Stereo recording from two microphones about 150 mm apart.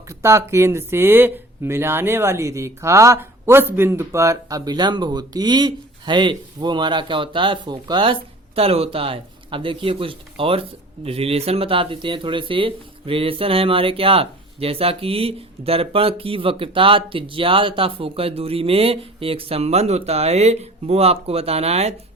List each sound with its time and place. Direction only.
0.1 s speech: 20° right (ahead or behind); by 21.9 s 45° right (ahead or behind)